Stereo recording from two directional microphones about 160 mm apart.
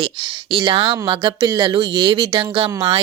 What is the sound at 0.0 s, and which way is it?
A woman's voice, 30° right (ahead or behind).